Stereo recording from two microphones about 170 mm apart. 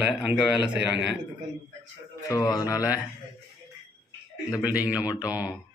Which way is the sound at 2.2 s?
20° left (ahead or behind).